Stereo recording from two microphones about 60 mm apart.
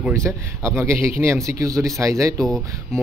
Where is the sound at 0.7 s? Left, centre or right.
Right.